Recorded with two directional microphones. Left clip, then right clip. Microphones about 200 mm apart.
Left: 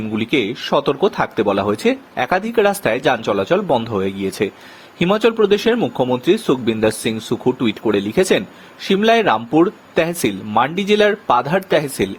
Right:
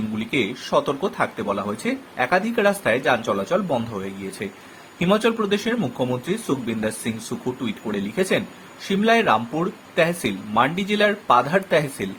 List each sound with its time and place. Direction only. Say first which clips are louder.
0.2 s speech: left 5 dB; 45° left (ahead or behind)